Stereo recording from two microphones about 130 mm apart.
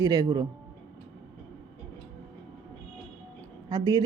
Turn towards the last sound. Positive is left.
turn(degrees=-35)  # may be behind; listen again after turning